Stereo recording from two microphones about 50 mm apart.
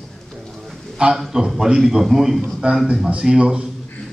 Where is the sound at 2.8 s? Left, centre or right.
Right.